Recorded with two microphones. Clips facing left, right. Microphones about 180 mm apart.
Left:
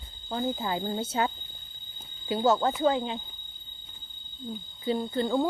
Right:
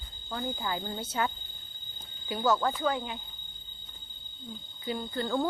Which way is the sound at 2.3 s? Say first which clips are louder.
Left 3 dB; 25° left (ahead or behind).